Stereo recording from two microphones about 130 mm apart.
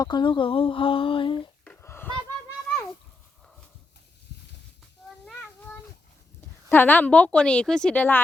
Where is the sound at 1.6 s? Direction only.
15° left (ahead or behind).